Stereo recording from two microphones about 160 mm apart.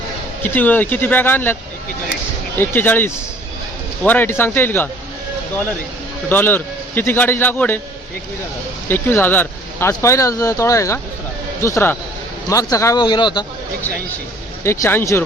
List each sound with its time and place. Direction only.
0.4 s speech: 10° left (ahead or behind)
2.6 s speech: 10° left (ahead or behind)
6.2 s speech: 10° left (ahead or behind)
8.9 s speech: 15° left (ahead or behind)
14.6 s speech: 15° left (ahead or behind)